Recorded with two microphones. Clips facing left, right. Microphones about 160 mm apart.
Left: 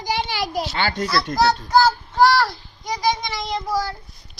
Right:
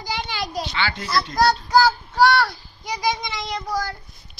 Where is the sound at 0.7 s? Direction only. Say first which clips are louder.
Left 1 dB; 45° left (ahead or behind).